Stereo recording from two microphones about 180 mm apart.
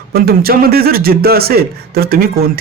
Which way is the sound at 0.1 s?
60° right (ahead or behind).